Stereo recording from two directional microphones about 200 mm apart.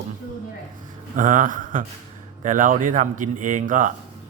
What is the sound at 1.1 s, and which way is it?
Speech, 40° right (ahead or behind).